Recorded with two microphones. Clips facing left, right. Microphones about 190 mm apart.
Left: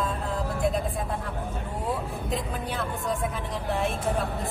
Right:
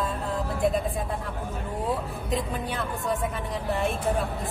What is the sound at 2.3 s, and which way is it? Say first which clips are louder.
Speech: right 3 dB; centre (ahead or behind).